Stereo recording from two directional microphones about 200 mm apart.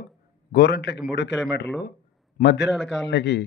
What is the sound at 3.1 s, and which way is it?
Speech, 60° left (ahead or behind).